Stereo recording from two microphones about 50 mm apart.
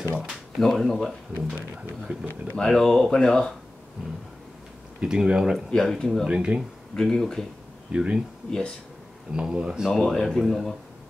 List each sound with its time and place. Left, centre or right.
0.6 s speech: centre
2.1 s speech: right
2.5 s speech: centre
5.0 s speech: centre
5.8 s speech: centre
6.2 s speech: centre
7.0 s speech: centre
7.9 s speech: centre
8.5 s speech: centre
9.3 s speech: centre
9.9 s speech: centre